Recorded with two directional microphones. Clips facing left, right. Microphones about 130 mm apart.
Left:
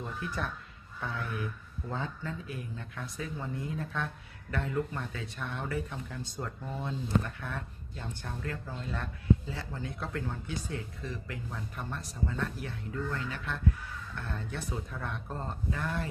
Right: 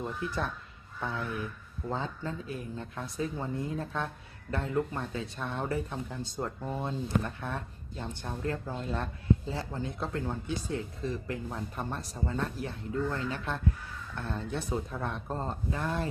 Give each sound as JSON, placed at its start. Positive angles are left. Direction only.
{"t": 0.0, "sound": "speech", "side_deg": -25}